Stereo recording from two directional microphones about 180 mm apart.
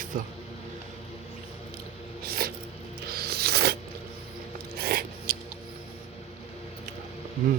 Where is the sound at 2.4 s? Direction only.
60° right (ahead or behind).